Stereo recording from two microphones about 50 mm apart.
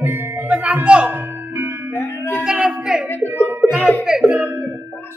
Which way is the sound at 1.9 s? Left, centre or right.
Left.